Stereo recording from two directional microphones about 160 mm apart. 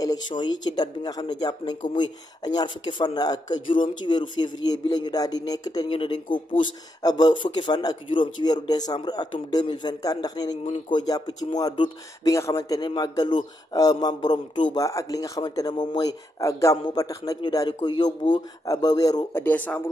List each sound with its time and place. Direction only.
0.0 s speech: 25° left (ahead or behind)
19.4 s speech: 10° left (ahead or behind)